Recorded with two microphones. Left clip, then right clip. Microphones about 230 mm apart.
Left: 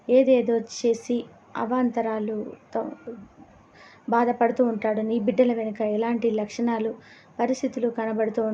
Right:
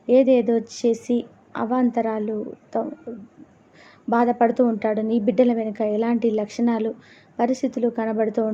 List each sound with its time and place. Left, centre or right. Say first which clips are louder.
0.1 s a woman's voice: right 2 dB; centre
4.1 s a woman's voice: right 2 dB; centre